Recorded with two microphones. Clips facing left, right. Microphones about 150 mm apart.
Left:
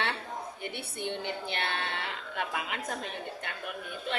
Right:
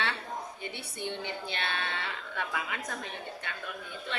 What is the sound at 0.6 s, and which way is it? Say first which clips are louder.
A woman's voice: left 2 dB; 55° left (ahead or behind).